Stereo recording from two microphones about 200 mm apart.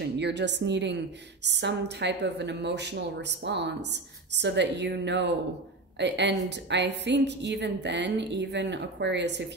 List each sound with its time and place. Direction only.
0.0 s a woman's voice: 60° right (ahead or behind)